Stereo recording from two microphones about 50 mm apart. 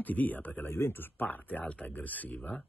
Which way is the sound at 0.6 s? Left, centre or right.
Left.